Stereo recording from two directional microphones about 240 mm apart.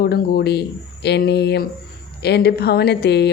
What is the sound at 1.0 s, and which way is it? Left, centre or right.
Speech, left.